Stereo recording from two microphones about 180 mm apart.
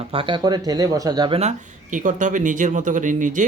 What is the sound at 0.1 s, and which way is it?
Speech, 30° right (ahead or behind).